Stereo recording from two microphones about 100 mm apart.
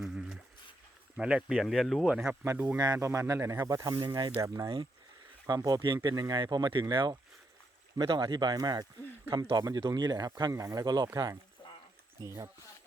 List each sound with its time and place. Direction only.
0.0 s a sound: 5° right (ahead or behind)
1.1 s speech: 5° right (ahead or behind)
2.4 s speech: 25° right (ahead or behind)
2.7 s speech: 40° right (ahead or behind)
3.8 s speech: 45° right (ahead or behind)
10.5 s speech: 30° right (ahead or behind)